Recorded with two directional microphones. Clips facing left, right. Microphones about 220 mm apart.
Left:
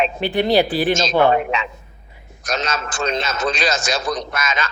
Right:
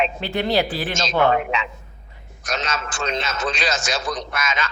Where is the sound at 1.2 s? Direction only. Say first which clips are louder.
Right 1 dB; 40° left (ahead or behind).